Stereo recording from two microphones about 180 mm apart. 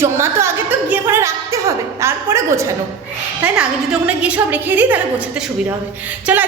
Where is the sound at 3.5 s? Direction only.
5° right (ahead or behind).